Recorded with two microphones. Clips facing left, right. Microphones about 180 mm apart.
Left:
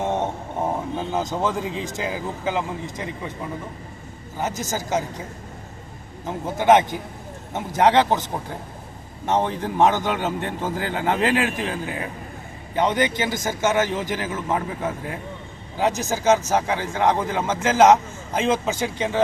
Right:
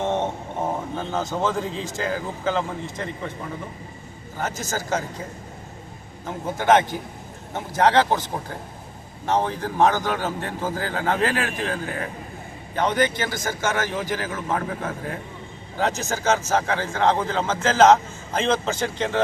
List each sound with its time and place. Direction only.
0.9 s speech: 15° left (ahead or behind)
4.4 s speech: 15° left (ahead or behind)
6.2 s a man's voice: 15° left (ahead or behind)
9.2 s a man's voice: 20° left (ahead or behind)